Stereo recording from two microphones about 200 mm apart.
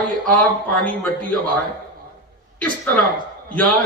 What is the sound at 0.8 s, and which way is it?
Speech, 5° left (ahead or behind).